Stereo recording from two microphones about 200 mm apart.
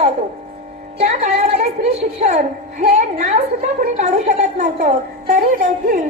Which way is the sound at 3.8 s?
35° right (ahead or behind).